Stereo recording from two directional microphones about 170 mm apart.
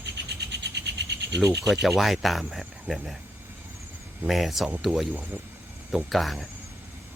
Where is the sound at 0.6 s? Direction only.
85° right.